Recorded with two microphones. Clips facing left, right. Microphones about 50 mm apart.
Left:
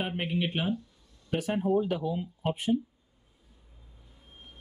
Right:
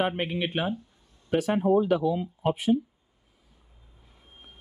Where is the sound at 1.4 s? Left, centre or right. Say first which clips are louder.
Right 4 dB; right.